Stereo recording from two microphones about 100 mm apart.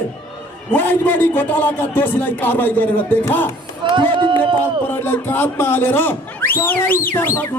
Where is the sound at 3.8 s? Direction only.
55° right (ahead or behind).